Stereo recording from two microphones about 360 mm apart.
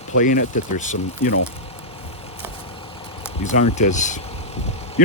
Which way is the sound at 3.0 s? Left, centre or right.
Centre.